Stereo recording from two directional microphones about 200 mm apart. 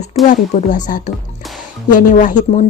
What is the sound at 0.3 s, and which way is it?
Speech, 40° left (ahead or behind).